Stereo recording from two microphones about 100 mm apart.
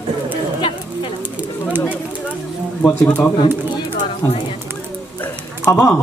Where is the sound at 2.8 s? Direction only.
15° left (ahead or behind).